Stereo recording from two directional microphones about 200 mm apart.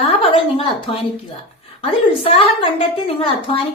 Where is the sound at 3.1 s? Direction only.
25° left (ahead or behind).